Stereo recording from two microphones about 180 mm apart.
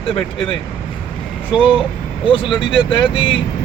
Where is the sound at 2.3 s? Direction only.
25° left (ahead or behind).